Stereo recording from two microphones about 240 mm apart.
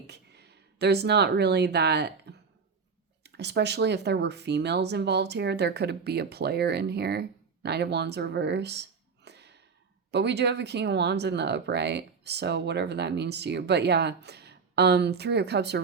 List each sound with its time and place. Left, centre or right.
0.1 s speech: right